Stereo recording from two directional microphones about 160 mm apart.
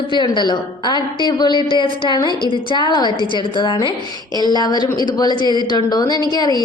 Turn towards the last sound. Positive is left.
turn(degrees=25)  # may be behind; listen again after turning